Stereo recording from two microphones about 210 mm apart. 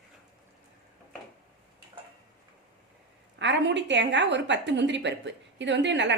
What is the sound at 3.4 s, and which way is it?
A woman's voice, 55° right (ahead or behind).